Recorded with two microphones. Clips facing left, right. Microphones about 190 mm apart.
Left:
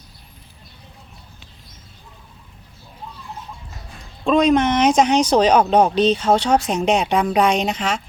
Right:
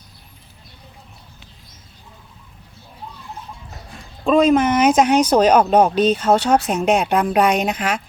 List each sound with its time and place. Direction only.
4.3 s speech: centre (ahead or behind)